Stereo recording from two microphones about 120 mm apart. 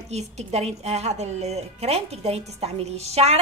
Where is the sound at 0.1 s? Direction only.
65° right (ahead or behind).